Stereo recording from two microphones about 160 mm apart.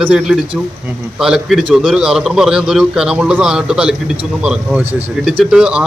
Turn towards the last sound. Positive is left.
turn(degrees=-5)  # may be behind; listen again after turning